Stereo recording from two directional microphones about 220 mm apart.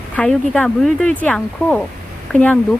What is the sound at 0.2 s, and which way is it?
Speech, 5° left (ahead or behind).